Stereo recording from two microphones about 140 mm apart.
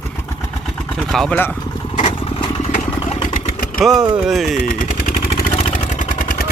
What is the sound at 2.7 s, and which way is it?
Vehicle, 65° left (ahead or behind).